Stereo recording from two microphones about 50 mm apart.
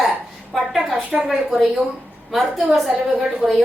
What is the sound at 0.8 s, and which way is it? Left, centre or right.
A woman's voice, centre.